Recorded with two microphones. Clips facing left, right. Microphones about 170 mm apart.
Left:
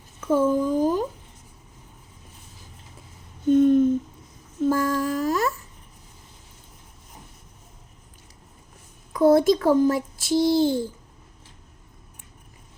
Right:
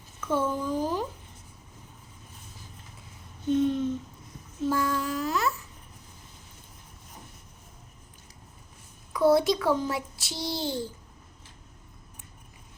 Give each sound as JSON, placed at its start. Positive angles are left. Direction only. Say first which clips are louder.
{"t": 0.2, "sound": "speech", "louder": "left 7 dB", "side_deg": 40}
{"t": 3.4, "sound": "a sound", "louder": "left 8 dB", "side_deg": 50}
{"t": 9.1, "sound": "a child's voice", "louder": "left 5 dB", "side_deg": 45}